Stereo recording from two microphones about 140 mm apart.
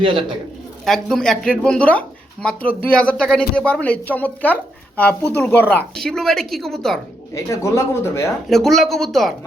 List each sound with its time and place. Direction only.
0.0 s a man's voice: 35° right (ahead or behind)
0.9 s speech: centre (ahead or behind)
7.3 s speech: 20° left (ahead or behind)
8.4 s speech: centre (ahead or behind)